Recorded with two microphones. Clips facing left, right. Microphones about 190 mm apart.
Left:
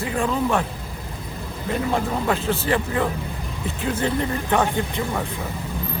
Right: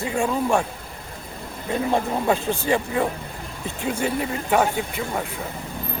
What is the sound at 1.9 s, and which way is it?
Speech, 15° right (ahead or behind).